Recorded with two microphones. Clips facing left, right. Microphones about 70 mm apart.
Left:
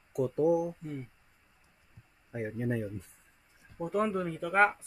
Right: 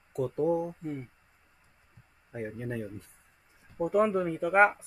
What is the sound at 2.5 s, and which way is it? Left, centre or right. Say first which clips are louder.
Speech: left 3 dB; left.